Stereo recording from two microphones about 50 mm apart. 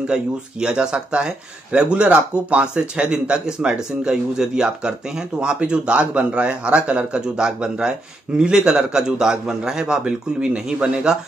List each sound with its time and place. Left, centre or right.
0.6 s a man's voice: right